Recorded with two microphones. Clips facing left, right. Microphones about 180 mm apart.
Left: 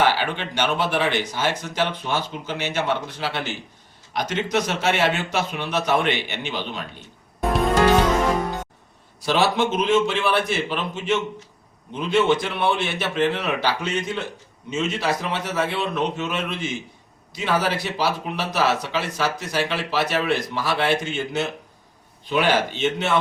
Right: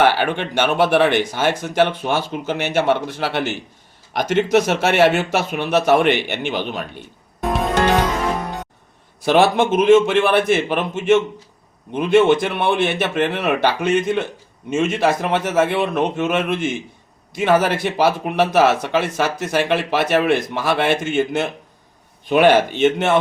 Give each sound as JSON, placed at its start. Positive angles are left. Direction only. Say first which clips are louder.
{"t": 0.0, "sound": "a man's voice", "louder": "right 5 dB", "side_deg": -55}
{"t": 4.7, "sound": "speech", "louder": "right 6 dB", "side_deg": -60}
{"t": 5.5, "sound": "speech", "louder": "right 10 dB", "side_deg": -50}
{"t": 9.2, "sound": "a man's voice", "louder": "right 6 dB", "side_deg": -55}